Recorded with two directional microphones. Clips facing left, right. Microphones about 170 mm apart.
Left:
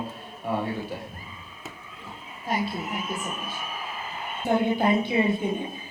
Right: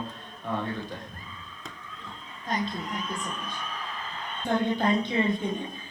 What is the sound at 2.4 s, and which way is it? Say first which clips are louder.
A man's voice: left 2 dB; 10° left (ahead or behind).